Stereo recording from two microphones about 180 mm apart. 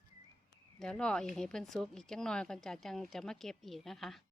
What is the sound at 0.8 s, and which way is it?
Speech, 5° left (ahead or behind).